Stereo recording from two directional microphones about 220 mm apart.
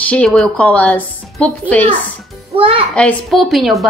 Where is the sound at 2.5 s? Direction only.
25° right (ahead or behind).